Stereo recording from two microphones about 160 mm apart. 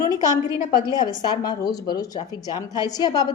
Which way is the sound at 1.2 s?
25° left (ahead or behind).